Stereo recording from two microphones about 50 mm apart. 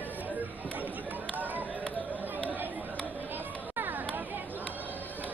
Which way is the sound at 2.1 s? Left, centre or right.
Right.